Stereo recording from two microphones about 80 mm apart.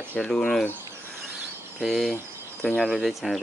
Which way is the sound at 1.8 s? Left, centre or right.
Centre.